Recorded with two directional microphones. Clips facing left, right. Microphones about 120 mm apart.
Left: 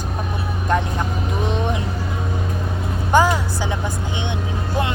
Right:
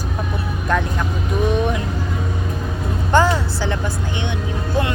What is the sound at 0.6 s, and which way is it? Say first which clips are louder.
Speech: even; 20° left (ahead or behind).